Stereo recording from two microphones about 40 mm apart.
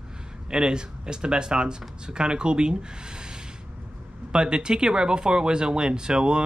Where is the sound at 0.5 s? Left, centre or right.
Right.